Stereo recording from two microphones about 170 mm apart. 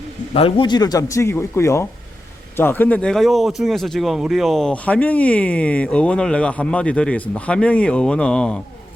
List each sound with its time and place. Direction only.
0.3 s speech: 35° left (ahead or behind); by 8.6 s 5° left (ahead or behind)